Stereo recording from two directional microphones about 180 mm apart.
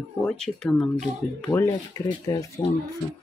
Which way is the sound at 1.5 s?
20° left (ahead or behind).